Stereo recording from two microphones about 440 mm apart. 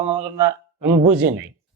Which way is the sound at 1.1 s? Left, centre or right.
Centre.